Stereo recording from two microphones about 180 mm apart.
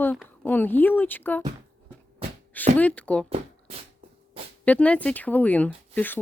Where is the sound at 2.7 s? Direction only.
10° left (ahead or behind).